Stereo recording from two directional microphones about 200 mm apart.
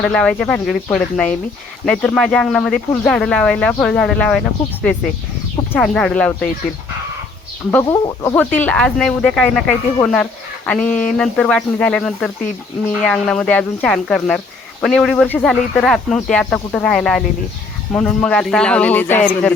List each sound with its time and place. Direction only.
0.0 s speech: 5° left (ahead or behind)
7.7 s speech: 10° left (ahead or behind)
8.4 s speech: 10° left (ahead or behind)